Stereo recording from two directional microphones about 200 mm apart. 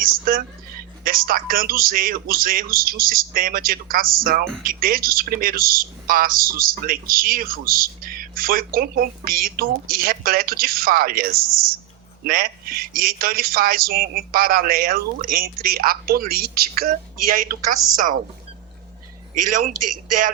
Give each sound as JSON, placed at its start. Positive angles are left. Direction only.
{"t": 0.0, "sound": "speech", "side_deg": -45}